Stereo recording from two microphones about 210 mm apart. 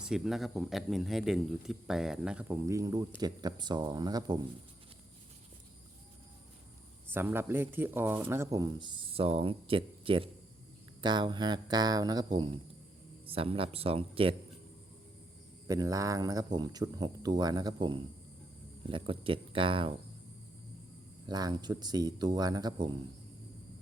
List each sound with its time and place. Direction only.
0.0 s speech: centre (ahead or behind); by 4.4 s 20° right (ahead or behind)
7.1 s speech: 10° right (ahead or behind); by 14.3 s 25° right (ahead or behind)
15.6 s speech: 15° right (ahead or behind)
21.2 s speech: 20° right (ahead or behind)